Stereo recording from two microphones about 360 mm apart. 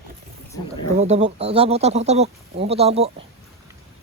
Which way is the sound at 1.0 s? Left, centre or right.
Centre.